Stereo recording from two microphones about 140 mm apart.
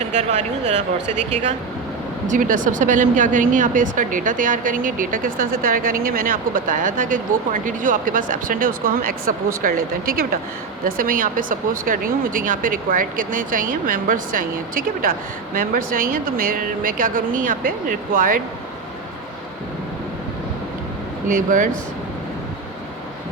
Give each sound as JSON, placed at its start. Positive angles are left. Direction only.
{"t": 0.0, "sound": "speech", "side_deg": -55}
{"t": 2.2, "sound": "speech", "side_deg": -70}
{"t": 21.3, "sound": "speech", "side_deg": -65}